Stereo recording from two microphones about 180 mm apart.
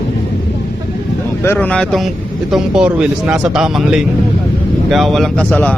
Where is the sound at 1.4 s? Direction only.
10° left (ahead or behind).